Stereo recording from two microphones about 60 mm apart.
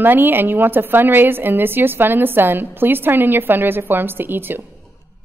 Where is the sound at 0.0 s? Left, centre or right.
Right.